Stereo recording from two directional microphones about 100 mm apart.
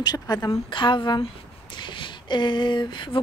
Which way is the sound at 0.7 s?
55° left (ahead or behind).